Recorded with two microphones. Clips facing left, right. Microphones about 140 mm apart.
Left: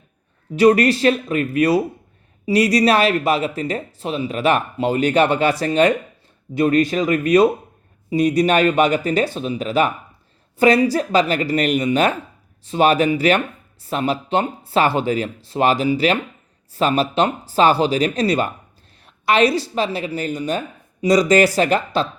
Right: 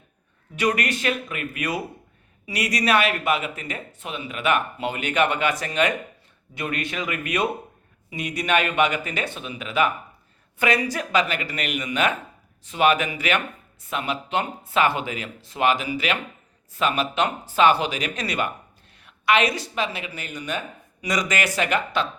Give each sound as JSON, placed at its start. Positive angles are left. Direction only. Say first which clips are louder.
{"t": 0.5, "sound": "speech", "louder": "left 10 dB", "side_deg": 35}